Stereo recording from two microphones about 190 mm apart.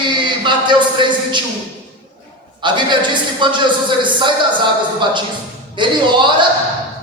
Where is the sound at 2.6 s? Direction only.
25° right (ahead or behind).